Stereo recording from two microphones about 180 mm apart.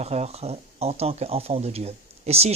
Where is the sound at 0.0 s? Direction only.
35° right (ahead or behind).